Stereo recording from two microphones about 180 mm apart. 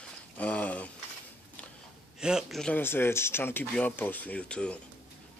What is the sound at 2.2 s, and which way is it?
Speech, centre (ahead or behind).